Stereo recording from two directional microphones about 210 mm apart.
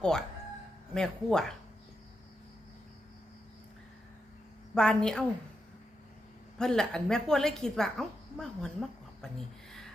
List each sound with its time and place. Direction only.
0.0 s a woman's voice: 5° left (ahead or behind)
4.7 s a woman's voice: 5° left (ahead or behind)
6.6 s a woman's voice: 5° left (ahead or behind)